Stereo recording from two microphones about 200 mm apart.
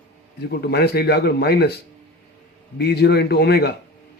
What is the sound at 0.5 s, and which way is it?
A man's voice, 55° left (ahead or behind).